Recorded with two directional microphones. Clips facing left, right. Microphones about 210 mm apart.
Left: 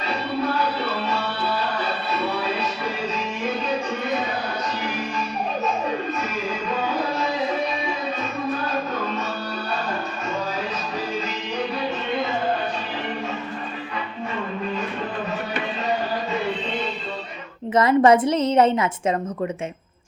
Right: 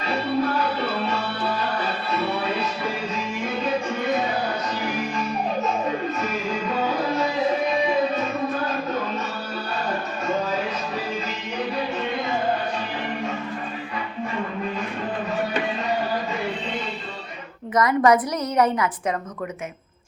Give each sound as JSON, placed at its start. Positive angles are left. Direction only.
{"t": 17.7, "sound": "a woman's voice", "side_deg": 25}